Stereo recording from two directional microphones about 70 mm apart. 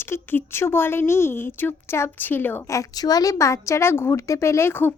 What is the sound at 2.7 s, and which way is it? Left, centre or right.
A child's voice, left.